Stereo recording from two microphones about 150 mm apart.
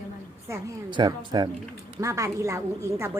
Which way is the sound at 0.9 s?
30° right (ahead or behind).